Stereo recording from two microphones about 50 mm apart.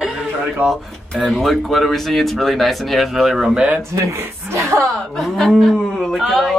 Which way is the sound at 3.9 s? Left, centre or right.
Right.